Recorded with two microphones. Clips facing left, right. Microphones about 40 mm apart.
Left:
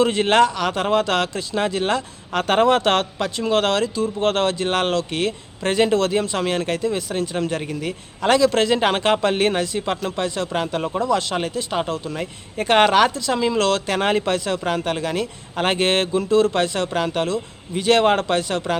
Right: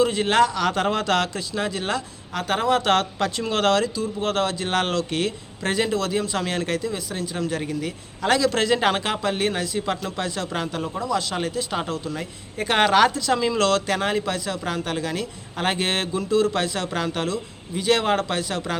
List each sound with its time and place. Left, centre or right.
0.0 s speech: left
0.5 s a man's voice: centre; by 2.9 s left
3.2 s speech: centre
4.0 s speech: left
6.3 s a man's voice: left
6.7 s a man's voice: left
9.0 s a man's voice: left